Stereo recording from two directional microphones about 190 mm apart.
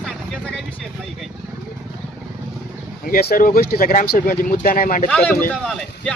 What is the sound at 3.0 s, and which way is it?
Speech, 50° left (ahead or behind).